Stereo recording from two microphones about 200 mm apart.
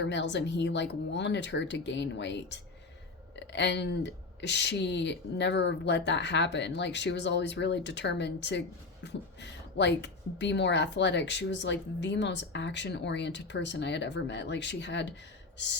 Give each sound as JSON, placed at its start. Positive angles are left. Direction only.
{"t": 0.0, "sound": "speech", "side_deg": 60}
{"t": 15.5, "sound": "gasp", "side_deg": 60}